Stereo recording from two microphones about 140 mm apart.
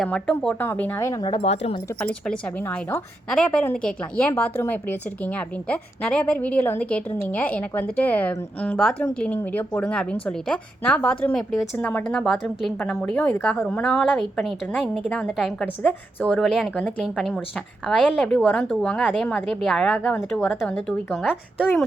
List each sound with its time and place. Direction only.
0.0 s a woman's voice: 5° left (ahead or behind)
1.2 s speech: 35° left (ahead or behind)
2.0 s a woman's voice: 5° left (ahead or behind)